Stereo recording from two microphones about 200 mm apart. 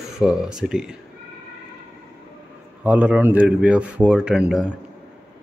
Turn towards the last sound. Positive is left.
turn(degrees=-5)  # may be behind; listen again after turning